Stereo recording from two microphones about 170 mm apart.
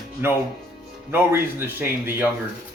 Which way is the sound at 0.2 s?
15° right (ahead or behind).